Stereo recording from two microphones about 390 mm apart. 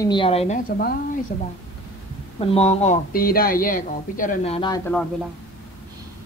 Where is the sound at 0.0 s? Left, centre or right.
Centre.